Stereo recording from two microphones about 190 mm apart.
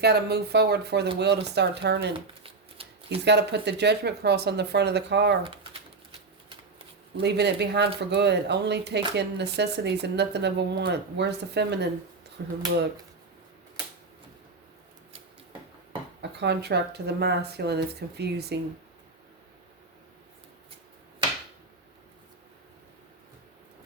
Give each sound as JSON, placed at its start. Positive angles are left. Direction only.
{"t": 0.0, "sound": "speech", "side_deg": -60}
{"t": 2.1, "sound": "shuffling cards", "side_deg": -30}
{"t": 3.2, "sound": "speech", "side_deg": -60}
{"t": 7.2, "sound": "speech", "side_deg": -60}
{"t": 16.4, "sound": "speech", "side_deg": -60}